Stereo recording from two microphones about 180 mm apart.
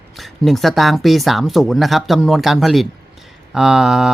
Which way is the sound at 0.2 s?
Centre (ahead or behind).